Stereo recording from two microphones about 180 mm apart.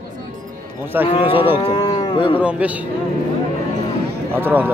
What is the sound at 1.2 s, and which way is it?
Cattle, 30° left (ahead or behind).